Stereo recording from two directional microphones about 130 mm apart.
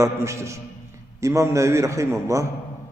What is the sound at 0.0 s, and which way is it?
A man's voice, 20° right (ahead or behind).